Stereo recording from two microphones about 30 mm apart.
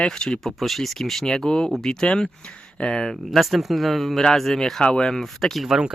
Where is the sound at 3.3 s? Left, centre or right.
Centre.